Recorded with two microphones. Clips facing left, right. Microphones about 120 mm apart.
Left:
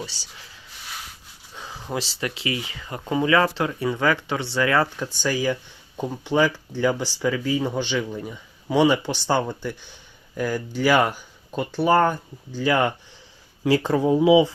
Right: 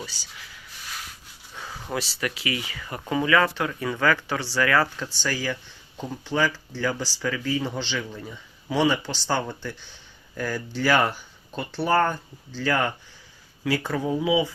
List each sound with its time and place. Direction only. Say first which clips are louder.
0.0 s speech: left 3 dB; 30° left (ahead or behind)
1.5 s a sound: even; 15° left (ahead or behind)
2.0 s speech: left 1 dB; 25° left (ahead or behind)
13.7 s speech: left 6 dB; 30° left (ahead or behind)